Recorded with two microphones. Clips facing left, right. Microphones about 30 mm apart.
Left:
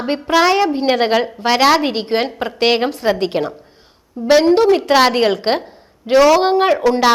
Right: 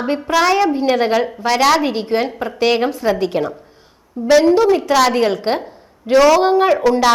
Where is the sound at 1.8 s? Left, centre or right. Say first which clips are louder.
Even; left.